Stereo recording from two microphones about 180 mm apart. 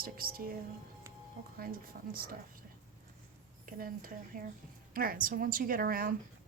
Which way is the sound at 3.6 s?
50° right (ahead or behind).